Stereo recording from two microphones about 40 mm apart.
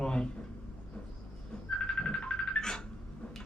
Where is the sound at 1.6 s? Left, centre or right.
Centre.